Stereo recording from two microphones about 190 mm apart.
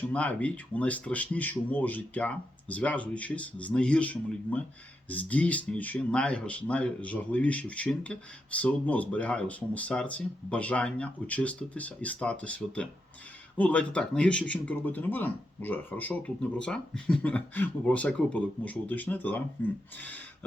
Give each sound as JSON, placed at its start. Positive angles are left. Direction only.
{"t": 0.1, "sound": "speech", "side_deg": 5}